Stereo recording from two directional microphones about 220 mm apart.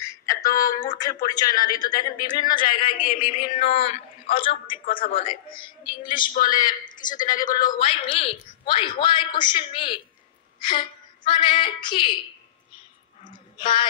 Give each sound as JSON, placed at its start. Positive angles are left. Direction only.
{"t": 0.0, "sound": "a sound", "side_deg": 15}
{"t": 0.7, "sound": "a man's voice", "side_deg": 15}
{"t": 2.7, "sound": "speech", "side_deg": 40}
{"t": 3.2, "sound": "a man's voice", "side_deg": 25}
{"t": 4.9, "sound": "speech", "side_deg": 40}
{"t": 5.6, "sound": "a man's voice", "side_deg": 20}
{"t": 6.3, "sound": "speech", "side_deg": 40}
{"t": 7.5, "sound": "a man's voice", "side_deg": 20}
{"t": 13.6, "sound": "speech", "side_deg": 20}